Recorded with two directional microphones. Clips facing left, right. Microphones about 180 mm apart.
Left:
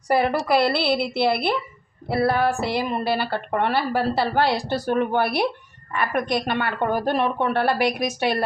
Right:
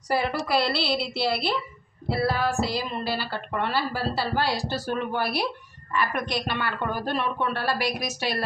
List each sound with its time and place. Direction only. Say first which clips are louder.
0.1 s a woman's voice: left 5 dB; 55° left (ahead or behind)